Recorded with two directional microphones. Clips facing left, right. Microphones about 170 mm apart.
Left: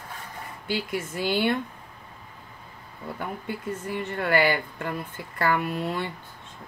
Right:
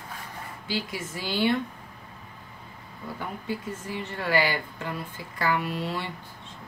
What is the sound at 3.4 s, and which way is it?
A woman's voice, 55° left (ahead or behind).